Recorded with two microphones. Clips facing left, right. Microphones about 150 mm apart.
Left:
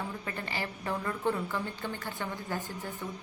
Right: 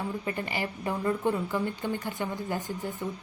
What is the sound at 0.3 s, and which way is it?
A woman's voice, 15° right (ahead or behind).